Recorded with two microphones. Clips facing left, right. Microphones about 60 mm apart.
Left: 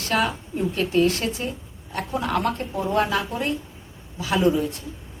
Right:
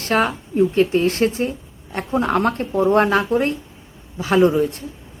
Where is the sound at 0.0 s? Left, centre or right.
Right.